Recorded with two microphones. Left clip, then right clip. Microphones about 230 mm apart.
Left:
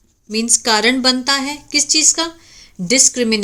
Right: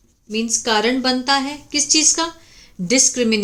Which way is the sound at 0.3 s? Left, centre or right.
Left.